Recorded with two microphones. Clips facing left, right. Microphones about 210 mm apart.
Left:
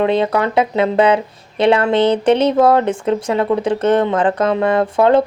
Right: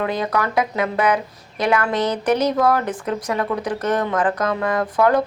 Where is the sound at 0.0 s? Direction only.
25° left (ahead or behind).